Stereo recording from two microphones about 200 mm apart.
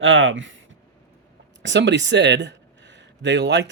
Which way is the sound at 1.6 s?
65° right (ahead or behind).